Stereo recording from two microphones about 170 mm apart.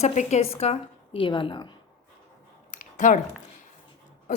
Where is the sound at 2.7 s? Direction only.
50° left (ahead or behind).